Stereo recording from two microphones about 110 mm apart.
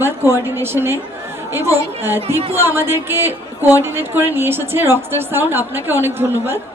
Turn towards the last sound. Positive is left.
turn(degrees=-20)  # may be behind; listen again after turning